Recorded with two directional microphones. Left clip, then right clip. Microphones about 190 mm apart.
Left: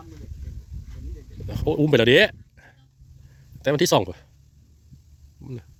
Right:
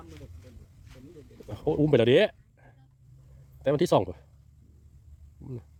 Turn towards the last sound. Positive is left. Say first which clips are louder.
# left 4 dB
turn(degrees=10)  # may be behind; listen again after turning